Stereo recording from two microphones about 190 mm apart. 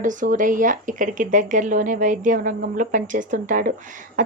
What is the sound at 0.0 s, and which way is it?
A woman's voice, 40° right (ahead or behind).